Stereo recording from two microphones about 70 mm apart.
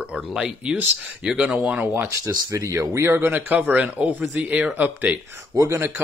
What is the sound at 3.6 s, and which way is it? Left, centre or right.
Speech, centre.